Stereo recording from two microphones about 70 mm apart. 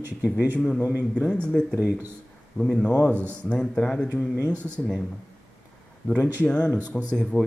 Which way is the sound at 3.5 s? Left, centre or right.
Centre.